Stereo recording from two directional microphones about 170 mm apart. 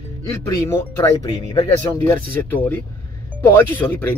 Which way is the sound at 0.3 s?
15° left (ahead or behind).